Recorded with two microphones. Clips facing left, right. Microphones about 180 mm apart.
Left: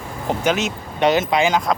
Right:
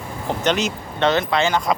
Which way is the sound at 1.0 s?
15° left (ahead or behind).